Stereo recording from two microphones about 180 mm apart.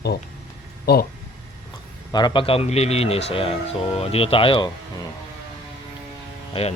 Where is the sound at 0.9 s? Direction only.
60° left (ahead or behind).